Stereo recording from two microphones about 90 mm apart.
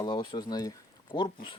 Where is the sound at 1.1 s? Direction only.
65° left (ahead or behind).